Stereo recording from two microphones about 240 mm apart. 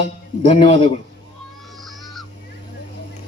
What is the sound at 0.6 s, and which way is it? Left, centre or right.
Speech, left.